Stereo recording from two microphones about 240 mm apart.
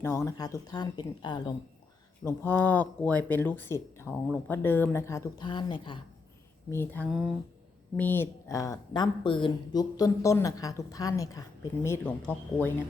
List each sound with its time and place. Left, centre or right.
0.0 s a woman's voice: centre
2.2 s a woman's voice: centre
6.7 s a woman's voice: centre